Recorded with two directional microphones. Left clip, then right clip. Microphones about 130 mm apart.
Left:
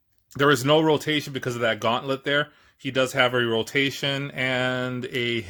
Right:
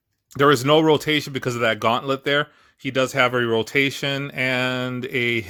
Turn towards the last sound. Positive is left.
turn(degrees=-35)  # may be behind; listen again after turning